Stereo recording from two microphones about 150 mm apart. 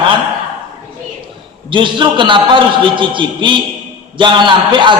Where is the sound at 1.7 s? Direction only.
30° right (ahead or behind).